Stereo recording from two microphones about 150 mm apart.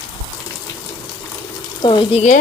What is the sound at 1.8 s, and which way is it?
Sewing machine, 30° left (ahead or behind).